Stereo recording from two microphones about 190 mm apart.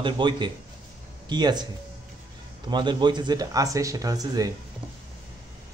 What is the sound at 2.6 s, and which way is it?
Speech, 25° right (ahead or behind).